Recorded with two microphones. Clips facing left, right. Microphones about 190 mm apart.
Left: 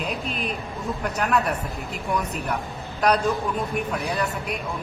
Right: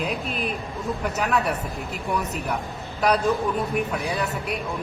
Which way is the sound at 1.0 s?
Centre (ahead or behind).